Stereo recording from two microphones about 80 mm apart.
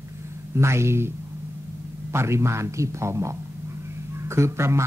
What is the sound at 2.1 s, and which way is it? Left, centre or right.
Speech, right.